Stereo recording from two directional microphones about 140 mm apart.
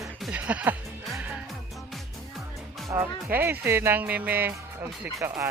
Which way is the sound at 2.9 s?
20° right (ahead or behind).